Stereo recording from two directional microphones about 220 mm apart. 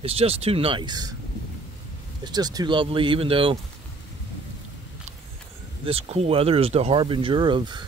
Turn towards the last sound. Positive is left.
turn(degrees=-20)  # may be behind; listen again after turning